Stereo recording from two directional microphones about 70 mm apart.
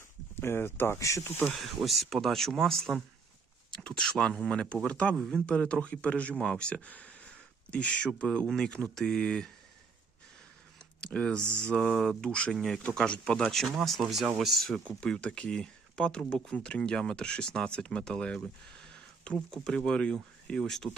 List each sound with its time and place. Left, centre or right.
0.3 s speech: left
0.9 s speech: left
1.5 s speech: centre
3.7 s a sound: centre
4.4 s speech: centre
11.0 s speech: centre
11.8 s speech: centre
12.3 s speech: centre
13.4 s speech: centre
15.0 s speech: centre